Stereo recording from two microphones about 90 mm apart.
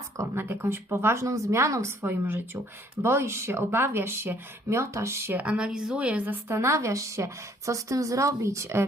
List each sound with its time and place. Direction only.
0.2 s speech: 25° right (ahead or behind)
2.0 s speech: 25° right (ahead or behind)
5.4 s a woman's voice: 10° right (ahead or behind)
6.6 s speech: 30° right (ahead or behind)